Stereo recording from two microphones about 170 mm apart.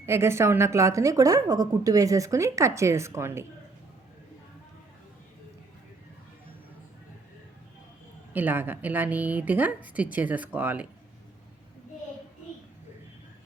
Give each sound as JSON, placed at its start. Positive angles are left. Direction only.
{"t": 0.0, "sound": "a woman's voice", "side_deg": -15}
{"t": 8.3, "sound": "a woman's voice", "side_deg": -10}